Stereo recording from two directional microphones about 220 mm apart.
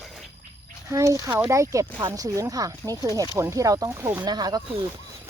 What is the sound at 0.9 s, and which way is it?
Speech, 15° right (ahead or behind).